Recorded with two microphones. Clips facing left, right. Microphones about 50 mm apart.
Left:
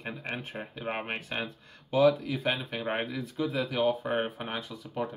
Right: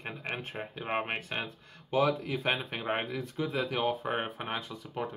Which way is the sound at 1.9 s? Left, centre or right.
Centre.